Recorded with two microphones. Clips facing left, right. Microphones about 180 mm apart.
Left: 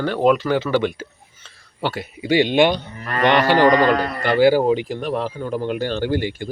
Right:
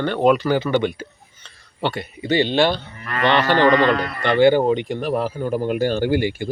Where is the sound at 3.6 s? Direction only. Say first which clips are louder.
Left 1 dB; 40° left (ahead or behind).